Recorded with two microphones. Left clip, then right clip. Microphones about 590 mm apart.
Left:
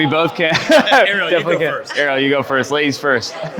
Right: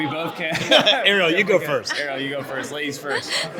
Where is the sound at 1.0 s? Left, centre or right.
Right.